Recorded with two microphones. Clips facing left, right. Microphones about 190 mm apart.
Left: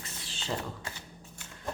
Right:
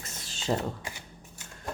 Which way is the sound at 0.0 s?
45° right (ahead or behind).